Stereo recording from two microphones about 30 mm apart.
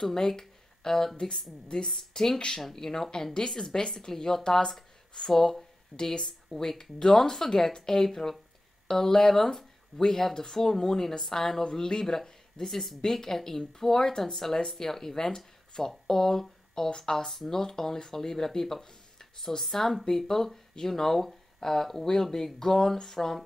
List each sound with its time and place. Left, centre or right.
0.0 s a woman's voice: centre
0.4 s a sound: centre
1.2 s a woman's voice: centre
5.3 s speech: centre
5.9 s speech: left
6.2 s speech: centre
12.6 s a woman's voice: centre
13.0 s speech: centre